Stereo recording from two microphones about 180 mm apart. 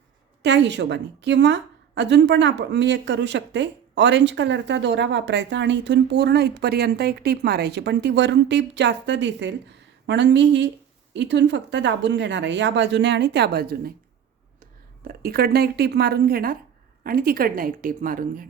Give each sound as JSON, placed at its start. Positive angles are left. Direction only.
{"t": 0.4, "sound": "a woman's voice", "side_deg": -75}